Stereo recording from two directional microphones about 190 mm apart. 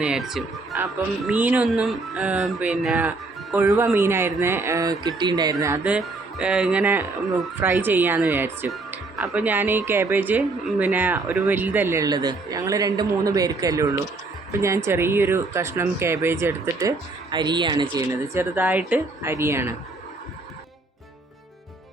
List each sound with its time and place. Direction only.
0.0 s speech: centre (ahead or behind); by 18.4 s 20° right (ahead or behind)
18.5 s speech: 10° right (ahead or behind)